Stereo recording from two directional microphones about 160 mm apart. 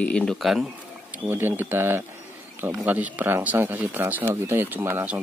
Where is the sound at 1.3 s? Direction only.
15° right (ahead or behind).